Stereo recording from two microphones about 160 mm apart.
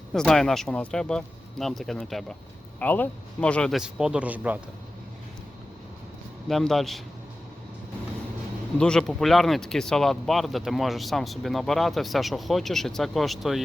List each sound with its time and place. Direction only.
0.1 s speech: 5° left (ahead or behind)
6.5 s speech: centre (ahead or behind)
8.8 s speech: 5° left (ahead or behind)